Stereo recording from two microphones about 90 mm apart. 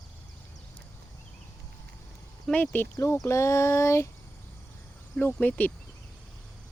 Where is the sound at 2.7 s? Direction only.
25° left (ahead or behind).